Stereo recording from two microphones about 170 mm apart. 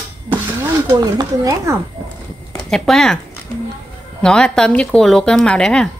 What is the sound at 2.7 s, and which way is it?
Speech, 5° left (ahead or behind).